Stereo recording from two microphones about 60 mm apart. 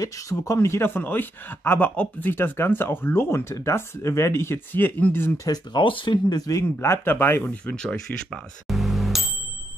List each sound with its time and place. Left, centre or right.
0.0 s speech: left
4.7 s speech: left
5.5 s speech: left
6.8 s speech: left
7.6 s speech: centre
8.6 s music: centre